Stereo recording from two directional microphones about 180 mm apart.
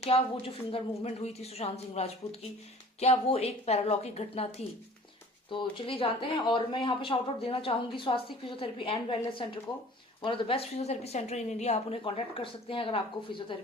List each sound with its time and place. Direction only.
0.0 s a woman's voice: 30° left (ahead or behind)
10.2 s a woman's voice: 30° left (ahead or behind)